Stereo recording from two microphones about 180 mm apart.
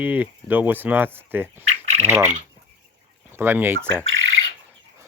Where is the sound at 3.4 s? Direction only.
10° right (ahead or behind).